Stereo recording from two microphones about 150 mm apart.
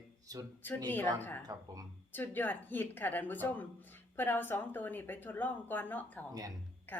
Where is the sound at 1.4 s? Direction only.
25° right (ahead or behind).